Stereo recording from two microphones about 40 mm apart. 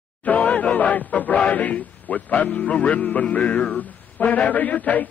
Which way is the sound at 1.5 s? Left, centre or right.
Left.